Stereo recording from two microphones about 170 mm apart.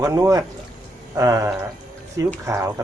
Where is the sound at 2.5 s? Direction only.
20° right (ahead or behind).